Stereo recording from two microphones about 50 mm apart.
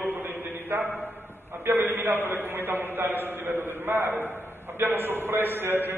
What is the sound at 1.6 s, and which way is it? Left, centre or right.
A man's voice, right.